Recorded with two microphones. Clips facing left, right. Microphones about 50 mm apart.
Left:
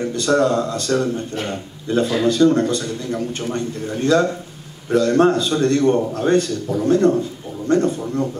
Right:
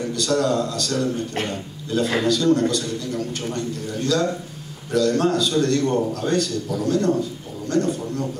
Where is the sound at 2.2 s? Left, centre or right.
Left.